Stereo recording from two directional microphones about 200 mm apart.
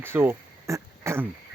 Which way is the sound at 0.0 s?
10° right (ahead or behind).